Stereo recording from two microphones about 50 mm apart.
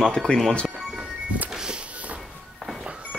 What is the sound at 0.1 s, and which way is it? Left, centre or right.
Speech, centre.